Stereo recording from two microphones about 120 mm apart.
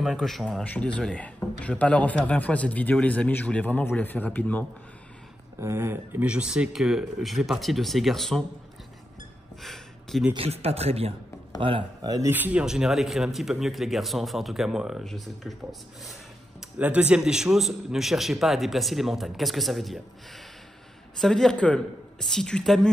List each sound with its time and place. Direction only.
0.0 s speech: centre (ahead or behind)
5.6 s speech: 20° right (ahead or behind); by 8.5 s 5° left (ahead or behind)
9.6 s a sound: centre (ahead or behind)
10.3 s speech: 55° right (ahead or behind)
11.6 s speech: 40° right (ahead or behind)
12.3 s speech: 15° right (ahead or behind)
16.7 s speech: 10° right (ahead or behind)
21.2 s speech: 5° left (ahead or behind)